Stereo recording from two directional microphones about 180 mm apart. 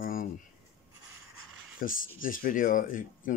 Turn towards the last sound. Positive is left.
turn(degrees=50)  # may be behind; listen again after turning